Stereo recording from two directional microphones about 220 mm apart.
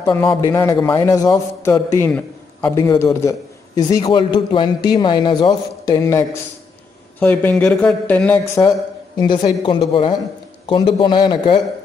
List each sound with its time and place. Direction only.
0.0 s a man's voice: 10° left (ahead or behind)